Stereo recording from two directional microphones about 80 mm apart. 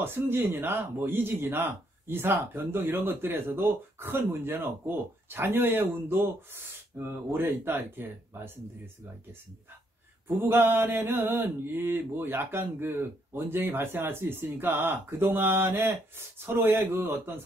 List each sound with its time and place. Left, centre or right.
0.0 s speech: right
10.5 s speech: right